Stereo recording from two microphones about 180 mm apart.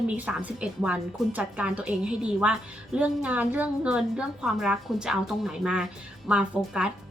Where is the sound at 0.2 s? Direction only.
5° right (ahead or behind).